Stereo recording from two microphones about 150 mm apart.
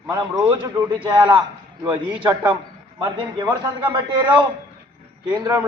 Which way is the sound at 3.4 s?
15° right (ahead or behind).